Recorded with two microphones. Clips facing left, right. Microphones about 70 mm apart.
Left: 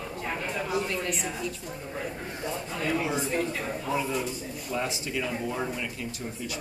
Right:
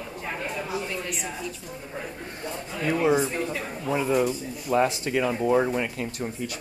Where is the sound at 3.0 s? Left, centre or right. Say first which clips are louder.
Right 5 dB; right.